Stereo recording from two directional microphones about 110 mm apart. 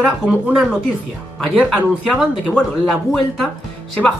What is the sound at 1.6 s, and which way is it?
Speech, 10° left (ahead or behind).